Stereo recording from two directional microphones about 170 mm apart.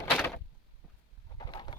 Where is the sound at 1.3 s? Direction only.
25° left (ahead or behind).